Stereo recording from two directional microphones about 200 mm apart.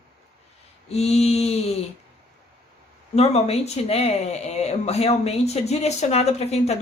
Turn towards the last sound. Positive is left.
turn(degrees=30)  # may be behind; listen again after turning